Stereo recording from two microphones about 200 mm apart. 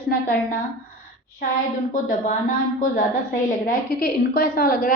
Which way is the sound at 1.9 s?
45° left (ahead or behind).